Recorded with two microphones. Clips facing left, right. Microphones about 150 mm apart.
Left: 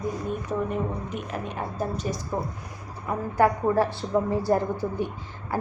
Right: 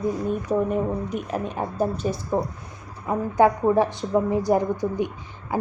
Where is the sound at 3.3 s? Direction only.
20° right (ahead or behind).